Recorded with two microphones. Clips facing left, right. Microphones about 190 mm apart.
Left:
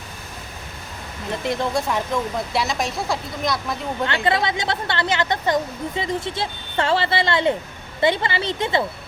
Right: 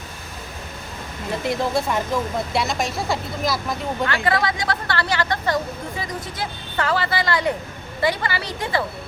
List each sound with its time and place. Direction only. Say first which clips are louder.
1.3 s speech: right 1 dB; centre (ahead or behind)
4.0 s speech: left 1 dB; 25° left (ahead or behind)